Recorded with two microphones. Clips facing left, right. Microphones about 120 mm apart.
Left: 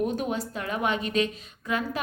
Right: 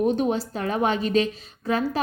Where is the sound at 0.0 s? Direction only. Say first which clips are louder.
Right 6 dB; 30° right (ahead or behind).